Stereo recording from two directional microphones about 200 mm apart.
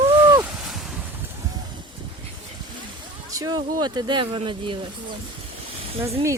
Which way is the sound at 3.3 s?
20° right (ahead or behind).